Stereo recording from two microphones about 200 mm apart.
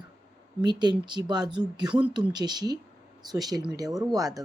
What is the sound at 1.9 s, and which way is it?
Speech, 5° right (ahead or behind).